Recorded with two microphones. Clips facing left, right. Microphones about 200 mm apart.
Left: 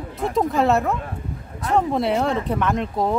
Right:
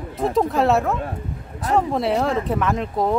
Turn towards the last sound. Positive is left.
turn(degrees=0)  # may be behind; listen again after turning